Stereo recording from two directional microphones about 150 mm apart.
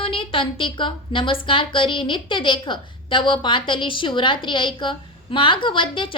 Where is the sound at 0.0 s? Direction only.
35° left (ahead or behind).